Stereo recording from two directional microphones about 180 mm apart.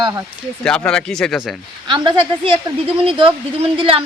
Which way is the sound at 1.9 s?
25° right (ahead or behind).